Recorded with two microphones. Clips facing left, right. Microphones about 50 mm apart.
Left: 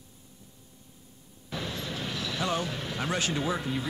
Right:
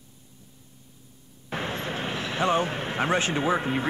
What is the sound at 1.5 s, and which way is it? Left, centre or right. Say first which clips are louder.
Vehicle: right 5 dB; right.